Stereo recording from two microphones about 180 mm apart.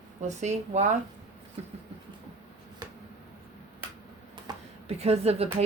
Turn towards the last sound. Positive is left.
turn(degrees=-35)  # may be behind; listen again after turning